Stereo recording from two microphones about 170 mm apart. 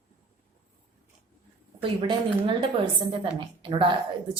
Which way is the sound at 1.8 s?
30° right (ahead or behind).